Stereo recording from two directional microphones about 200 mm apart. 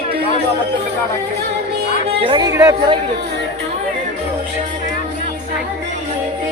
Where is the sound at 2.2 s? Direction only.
20° right (ahead or behind).